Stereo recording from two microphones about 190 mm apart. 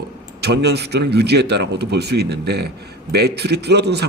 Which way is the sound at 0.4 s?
60° right (ahead or behind).